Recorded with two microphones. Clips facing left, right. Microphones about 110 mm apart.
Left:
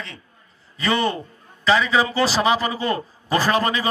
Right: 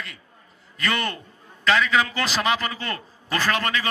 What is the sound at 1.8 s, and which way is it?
A man's voice, 30° left (ahead or behind).